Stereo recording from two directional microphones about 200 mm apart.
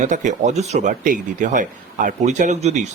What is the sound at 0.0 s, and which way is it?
Speech, 40° right (ahead or behind).